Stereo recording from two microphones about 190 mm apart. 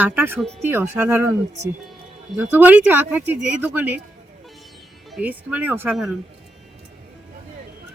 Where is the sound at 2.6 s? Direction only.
10° right (ahead or behind).